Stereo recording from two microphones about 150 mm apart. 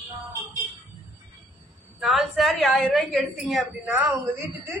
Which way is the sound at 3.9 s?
10° right (ahead or behind).